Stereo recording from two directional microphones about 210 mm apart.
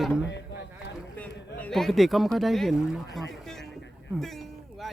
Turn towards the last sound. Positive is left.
turn(degrees=0)  # may be behind; listen again after turning